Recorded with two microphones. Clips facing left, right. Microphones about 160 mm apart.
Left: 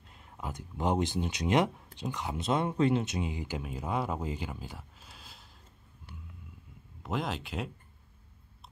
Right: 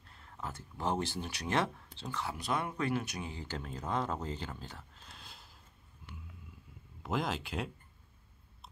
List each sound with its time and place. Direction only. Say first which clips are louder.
0.0 s speech: left 3 dB; 15° left (ahead or behind); by 5.5 s centre (ahead or behind)
7.0 s speech: left 1 dB; centre (ahead or behind)